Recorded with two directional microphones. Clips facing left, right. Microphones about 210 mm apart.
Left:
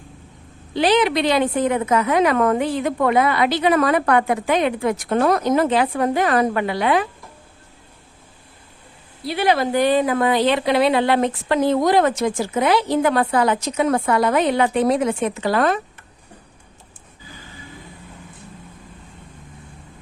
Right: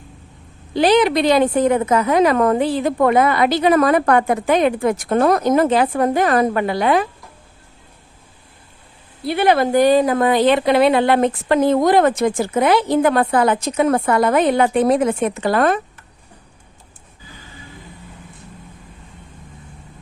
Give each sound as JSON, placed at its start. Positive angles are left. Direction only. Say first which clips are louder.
{"t": 0.7, "sound": "a woman's voice", "louder": "right 3 dB", "side_deg": -45}
{"t": 3.1, "sound": "speech", "louder": "right 1 dB", "side_deg": -45}
{"t": 9.2, "sound": "speech", "louder": "right 3 dB", "side_deg": -55}